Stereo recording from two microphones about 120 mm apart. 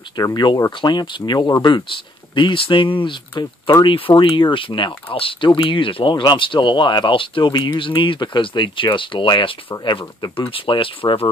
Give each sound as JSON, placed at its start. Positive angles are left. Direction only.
{"t": 0.2, "sound": "speech", "side_deg": 30}
{"t": 0.7, "sound": "speech", "side_deg": 40}